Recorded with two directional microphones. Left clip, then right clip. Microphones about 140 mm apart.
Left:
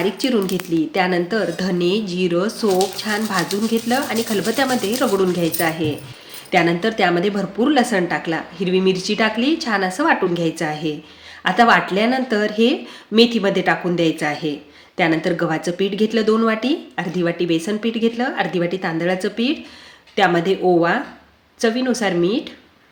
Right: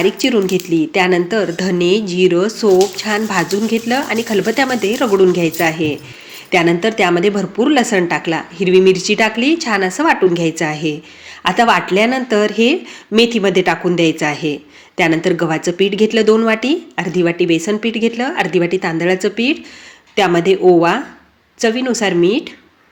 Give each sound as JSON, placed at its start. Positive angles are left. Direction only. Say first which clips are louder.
{"t": 0.0, "sound": "a woman's voice", "louder": "right 5 dB", "side_deg": -15}